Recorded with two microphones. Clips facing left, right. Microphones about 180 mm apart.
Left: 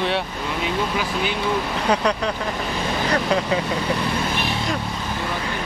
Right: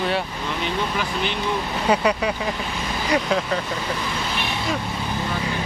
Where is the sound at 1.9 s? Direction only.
10° right (ahead or behind).